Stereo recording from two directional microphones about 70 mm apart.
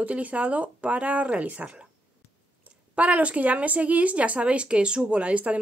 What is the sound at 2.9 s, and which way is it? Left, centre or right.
Speech, centre.